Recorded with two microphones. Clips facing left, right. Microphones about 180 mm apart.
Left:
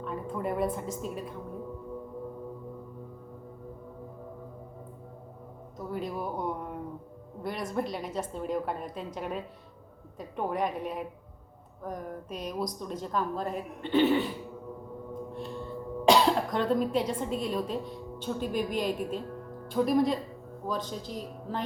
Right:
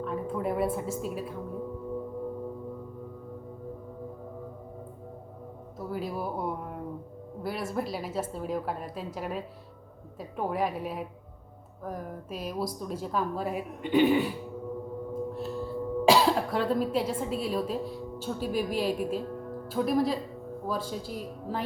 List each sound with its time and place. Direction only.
0.0 s a woman's voice: centre (ahead or behind)
5.8 s a woman's voice: 5° right (ahead or behind)
15.3 s a woman's voice: 5° right (ahead or behind)